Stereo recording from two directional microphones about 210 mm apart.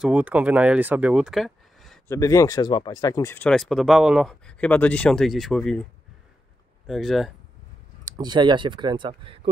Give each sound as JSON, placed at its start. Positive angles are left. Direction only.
{"t": 0.0, "sound": "speech", "side_deg": -5}
{"t": 2.0, "sound": "speech", "side_deg": 15}
{"t": 6.9, "sound": "speech", "side_deg": 0}
{"t": 8.0, "sound": "speech", "side_deg": -20}